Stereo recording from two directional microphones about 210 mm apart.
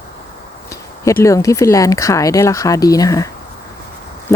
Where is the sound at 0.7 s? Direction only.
15° left (ahead or behind).